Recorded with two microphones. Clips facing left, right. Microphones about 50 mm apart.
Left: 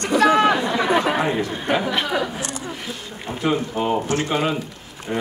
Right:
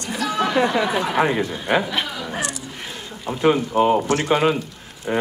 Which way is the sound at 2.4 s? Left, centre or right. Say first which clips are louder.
Right 1 dB; left.